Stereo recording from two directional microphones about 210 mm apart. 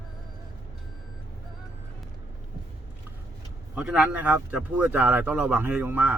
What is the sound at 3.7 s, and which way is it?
Speech, 5° right (ahead or behind).